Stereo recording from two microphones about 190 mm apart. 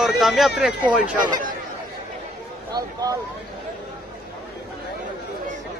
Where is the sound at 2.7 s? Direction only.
20° right (ahead or behind).